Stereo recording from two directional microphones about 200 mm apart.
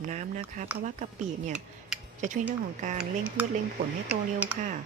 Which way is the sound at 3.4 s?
5° right (ahead or behind).